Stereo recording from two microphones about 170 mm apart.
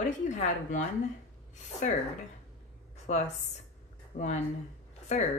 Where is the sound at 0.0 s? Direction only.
45° left (ahead or behind).